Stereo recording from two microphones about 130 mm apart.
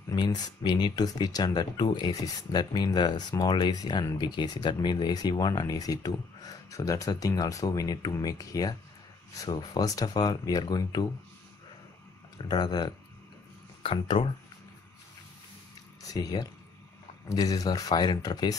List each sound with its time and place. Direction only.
0.1 s speech: 30° left (ahead or behind)
12.4 s speech: 35° left (ahead or behind)
16.0 s speech: 30° left (ahead or behind)